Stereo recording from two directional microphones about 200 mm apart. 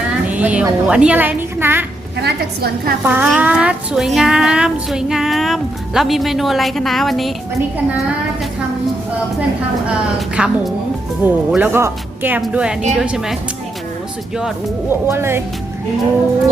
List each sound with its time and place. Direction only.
0.3 s a woman's voice: 5° right (ahead or behind)
2.2 s a woman's voice: 50° right (ahead or behind)
3.0 s a child's voice: 10° right (ahead or behind)
9.8 s a child's voice: 5° right (ahead or behind)
14.3 s a child's voice: centre (ahead or behind)